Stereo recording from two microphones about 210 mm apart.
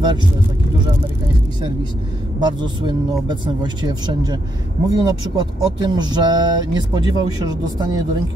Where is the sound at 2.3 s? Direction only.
20° right (ahead or behind).